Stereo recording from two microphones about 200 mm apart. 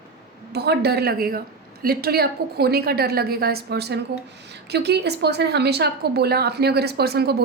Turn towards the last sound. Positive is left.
turn(degrees=-55)  # may be behind; listen again after turning